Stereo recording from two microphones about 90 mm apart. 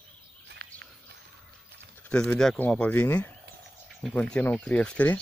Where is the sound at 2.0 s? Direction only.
15° left (ahead or behind).